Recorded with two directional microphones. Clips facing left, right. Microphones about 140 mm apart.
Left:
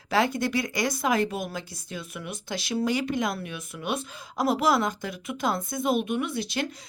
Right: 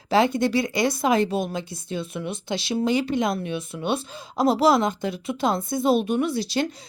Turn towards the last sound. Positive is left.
turn(degrees=-35)  # may be behind; listen again after turning